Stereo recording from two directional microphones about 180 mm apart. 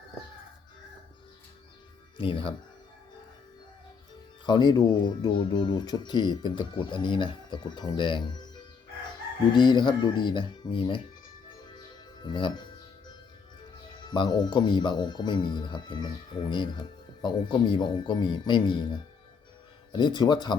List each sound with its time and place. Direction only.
2.1 s speech: 30° left (ahead or behind)
4.4 s speech: 25° left (ahead or behind)
12.2 s speech: 25° left (ahead or behind)
14.1 s speech: 25° left (ahead or behind)
19.9 s speech: 25° left (ahead or behind)